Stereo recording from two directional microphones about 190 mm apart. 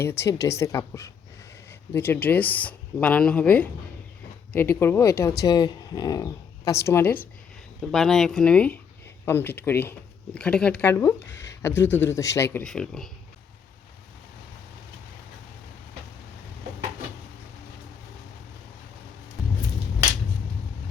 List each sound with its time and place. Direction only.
0.0 s speech: 15° left (ahead or behind)
7.8 s speech: centre (ahead or behind)